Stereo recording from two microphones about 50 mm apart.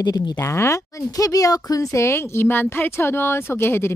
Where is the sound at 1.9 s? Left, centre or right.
Left.